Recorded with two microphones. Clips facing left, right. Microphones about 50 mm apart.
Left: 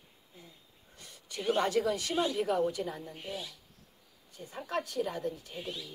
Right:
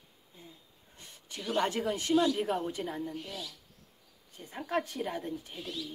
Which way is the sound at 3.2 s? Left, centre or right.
Left.